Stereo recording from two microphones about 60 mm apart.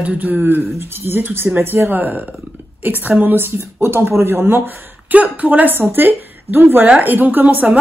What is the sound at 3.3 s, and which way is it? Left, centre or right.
A woman's voice, right.